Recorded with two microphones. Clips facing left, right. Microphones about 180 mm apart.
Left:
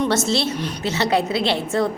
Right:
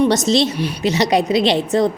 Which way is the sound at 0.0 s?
15° right (ahead or behind).